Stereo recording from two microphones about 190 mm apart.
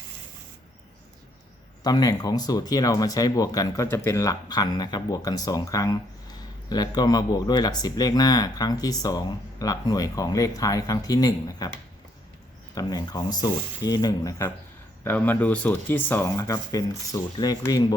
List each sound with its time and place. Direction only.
1.8 s speech: 20° left (ahead or behind)
12.7 s speech: 20° left (ahead or behind)